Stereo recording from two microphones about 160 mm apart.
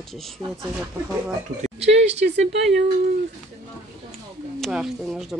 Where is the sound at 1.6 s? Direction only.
40° right (ahead or behind).